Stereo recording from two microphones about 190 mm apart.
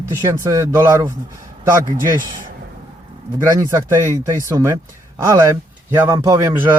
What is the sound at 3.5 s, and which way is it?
Speech, 15° right (ahead or behind).